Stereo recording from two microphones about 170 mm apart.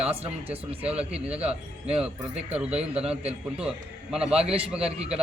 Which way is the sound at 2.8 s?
35° right (ahead or behind).